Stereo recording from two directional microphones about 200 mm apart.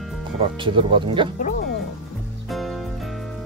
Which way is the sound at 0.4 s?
25° right (ahead or behind).